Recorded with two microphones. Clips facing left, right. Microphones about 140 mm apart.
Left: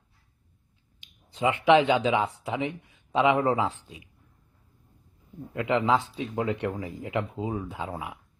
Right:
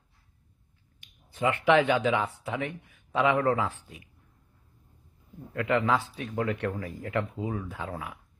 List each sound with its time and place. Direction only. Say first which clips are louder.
1.3 s speech: left 3 dB; 15° left (ahead or behind)
5.5 s speech: left 2 dB; 20° left (ahead or behind)